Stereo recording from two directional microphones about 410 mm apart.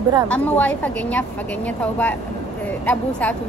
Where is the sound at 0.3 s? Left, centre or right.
Centre.